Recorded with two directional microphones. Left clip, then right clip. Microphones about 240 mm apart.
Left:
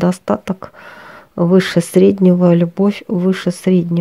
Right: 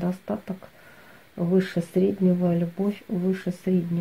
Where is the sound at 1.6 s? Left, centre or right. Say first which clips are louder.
Left 11 dB; left.